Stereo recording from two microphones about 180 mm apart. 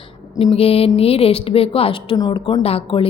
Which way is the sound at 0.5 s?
35° left (ahead or behind).